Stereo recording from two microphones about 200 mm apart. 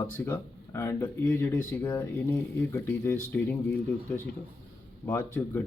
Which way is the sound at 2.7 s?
10° left (ahead or behind).